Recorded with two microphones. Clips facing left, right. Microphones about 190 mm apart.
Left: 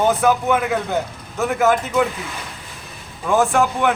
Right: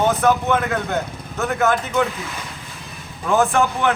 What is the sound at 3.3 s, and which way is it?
Speech, 10° left (ahead or behind).